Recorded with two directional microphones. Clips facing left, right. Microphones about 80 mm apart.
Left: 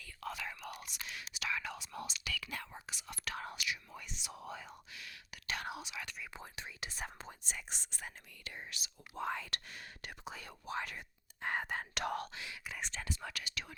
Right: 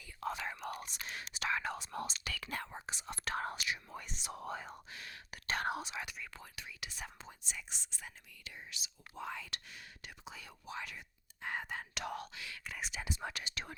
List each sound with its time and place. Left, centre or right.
0.0 s speech: right
6.3 s speech: left
7.2 s speech: left
12.3 s speech: left
12.6 s speech: centre
12.9 s speech: centre; by 13.7 s right